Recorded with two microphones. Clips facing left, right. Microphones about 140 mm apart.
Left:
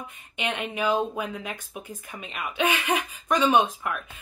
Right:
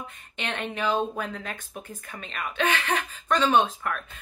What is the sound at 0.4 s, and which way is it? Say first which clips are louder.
Speech: left 2 dB; 10° left (ahead or behind).